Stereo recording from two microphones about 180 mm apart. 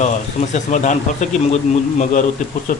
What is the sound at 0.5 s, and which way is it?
Speech, 45° left (ahead or behind).